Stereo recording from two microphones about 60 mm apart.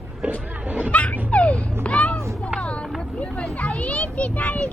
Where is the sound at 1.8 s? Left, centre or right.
Left.